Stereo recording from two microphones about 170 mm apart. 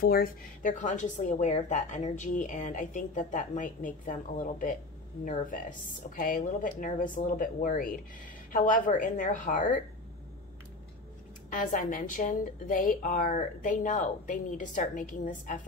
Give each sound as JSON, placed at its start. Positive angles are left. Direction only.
{"t": 0.0, "sound": "a woman's voice", "side_deg": 60}
{"t": 11.5, "sound": "a woman's voice", "side_deg": 50}